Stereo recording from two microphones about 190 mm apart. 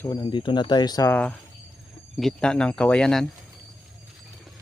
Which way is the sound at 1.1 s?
5° left (ahead or behind).